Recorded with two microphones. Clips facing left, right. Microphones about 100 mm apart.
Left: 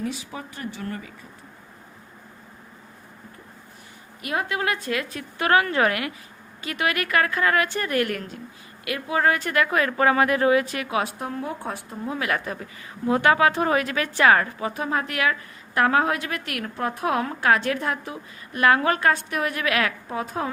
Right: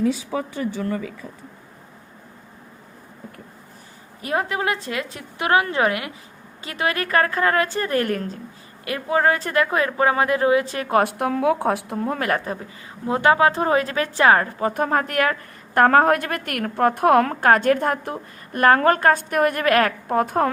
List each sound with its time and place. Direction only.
4.2 s a woman's voice: 30° right (ahead or behind)
10.8 s a woman's voice: 55° right (ahead or behind); by 14.7 s 35° right (ahead or behind)
14.7 s a woman's voice: 50° right (ahead or behind)